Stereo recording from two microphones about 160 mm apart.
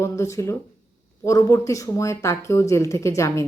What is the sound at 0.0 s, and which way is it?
Speech, 20° left (ahead or behind).